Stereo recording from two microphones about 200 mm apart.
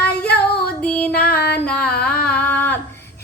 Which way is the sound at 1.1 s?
50° left (ahead or behind).